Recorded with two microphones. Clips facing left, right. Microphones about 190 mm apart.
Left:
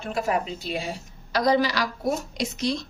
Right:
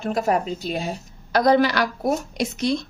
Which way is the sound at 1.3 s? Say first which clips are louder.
Right 4 dB; 55° right (ahead or behind).